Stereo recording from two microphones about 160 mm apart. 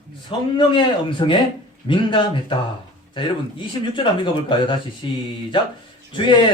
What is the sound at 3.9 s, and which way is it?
A man's voice, 30° left (ahead or behind).